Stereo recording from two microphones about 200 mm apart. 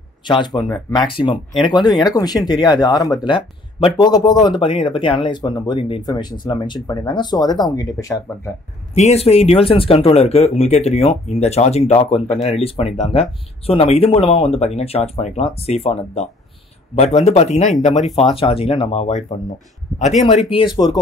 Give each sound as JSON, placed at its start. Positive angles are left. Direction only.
{"t": 0.2, "sound": "speech", "side_deg": 25}
{"t": 8.9, "sound": "speech", "side_deg": 30}